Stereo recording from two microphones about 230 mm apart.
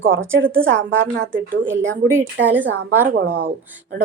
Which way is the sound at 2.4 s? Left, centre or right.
Right.